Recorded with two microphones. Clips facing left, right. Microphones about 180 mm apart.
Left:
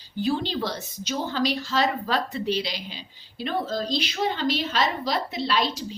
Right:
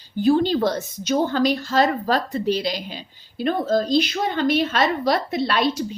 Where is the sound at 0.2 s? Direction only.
45° right (ahead or behind).